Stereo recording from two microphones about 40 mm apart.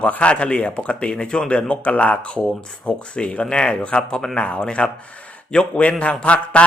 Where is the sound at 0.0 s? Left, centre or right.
Left.